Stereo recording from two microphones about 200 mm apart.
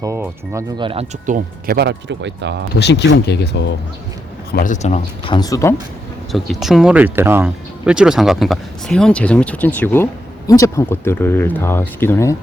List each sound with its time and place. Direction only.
0.0 s speech: 15° right (ahead or behind)
0.9 s speech: 30° right (ahead or behind)
1.6 s speech: 50° right (ahead or behind)
2.7 s speech: 60° left (ahead or behind)
4.5 s speech: 40° left (ahead or behind); by 5.7 s 15° left (ahead or behind)
6.3 s speech: centre (ahead or behind)